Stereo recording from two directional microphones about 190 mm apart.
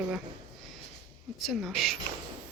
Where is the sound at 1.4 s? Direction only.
Centre (ahead or behind).